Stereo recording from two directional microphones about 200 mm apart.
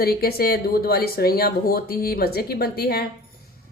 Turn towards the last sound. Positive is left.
turn(degrees=50)  # may be behind; listen again after turning